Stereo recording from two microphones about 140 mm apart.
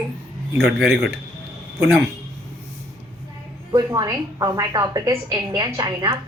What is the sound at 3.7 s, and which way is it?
A woman's voice, 25° right (ahead or behind).